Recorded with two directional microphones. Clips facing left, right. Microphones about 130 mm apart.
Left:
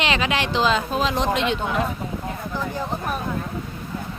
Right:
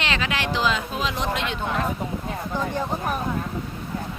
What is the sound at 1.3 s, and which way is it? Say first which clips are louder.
Speech: left 5 dB; 25° left (ahead or behind).